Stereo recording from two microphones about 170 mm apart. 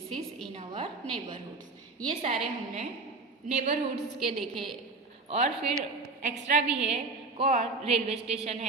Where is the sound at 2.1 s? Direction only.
40° right (ahead or behind).